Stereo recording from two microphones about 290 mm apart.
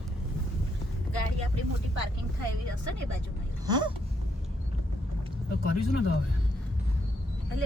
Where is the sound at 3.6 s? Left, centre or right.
Centre.